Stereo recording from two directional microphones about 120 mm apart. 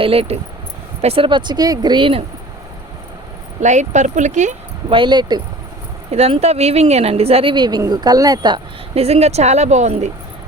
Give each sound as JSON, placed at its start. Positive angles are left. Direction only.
{"t": 0.0, "sound": "speech", "side_deg": -50}
{"t": 3.6, "sound": "speech", "side_deg": -80}
{"t": 4.9, "sound": "speech", "side_deg": -40}
{"t": 6.1, "sound": "speech", "side_deg": -60}
{"t": 7.5, "sound": "speech", "side_deg": -40}
{"t": 9.0, "sound": "speech", "side_deg": -60}